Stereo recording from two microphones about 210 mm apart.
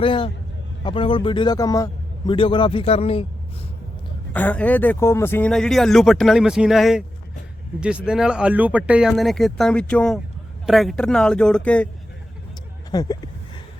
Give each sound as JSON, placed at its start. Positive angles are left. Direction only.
{"t": 0.0, "sound": "a man's voice", "side_deg": 25}
{"t": 4.3, "sound": "speech", "side_deg": 10}
{"t": 12.9, "sound": "speech", "side_deg": 15}